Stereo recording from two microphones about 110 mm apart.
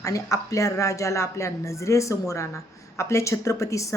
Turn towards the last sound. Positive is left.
turn(degrees=30)  # may be behind; listen again after turning